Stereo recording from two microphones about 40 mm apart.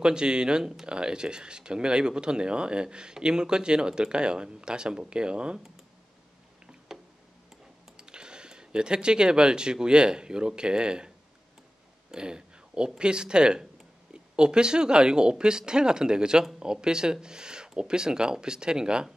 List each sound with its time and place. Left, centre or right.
0.0 s speech: right
6.9 s tick: centre
8.0 s speech: right
12.1 s speech: right